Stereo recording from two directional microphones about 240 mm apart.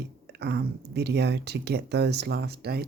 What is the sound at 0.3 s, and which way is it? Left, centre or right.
Speech, right.